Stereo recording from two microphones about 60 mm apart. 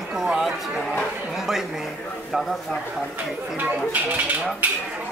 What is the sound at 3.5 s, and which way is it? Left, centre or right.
Speech, right.